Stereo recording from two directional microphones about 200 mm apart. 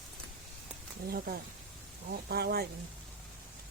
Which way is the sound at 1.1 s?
45° right (ahead or behind).